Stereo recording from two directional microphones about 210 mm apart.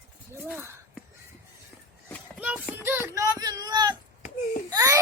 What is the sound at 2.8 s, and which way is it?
A child's voice, 10° right (ahead or behind).